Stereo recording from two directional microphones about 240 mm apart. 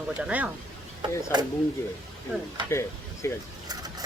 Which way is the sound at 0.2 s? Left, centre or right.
Centre.